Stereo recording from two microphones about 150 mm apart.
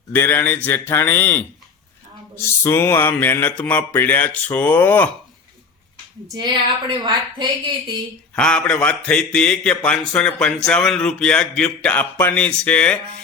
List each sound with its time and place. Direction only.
0.1 s speech: 15° left (ahead or behind)
6.3 s speech: 30° right (ahead or behind)
8.4 s a man's voice: 5° left (ahead or behind)